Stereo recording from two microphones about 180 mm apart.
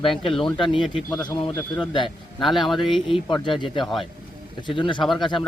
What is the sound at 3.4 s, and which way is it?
Speech, 25° left (ahead or behind).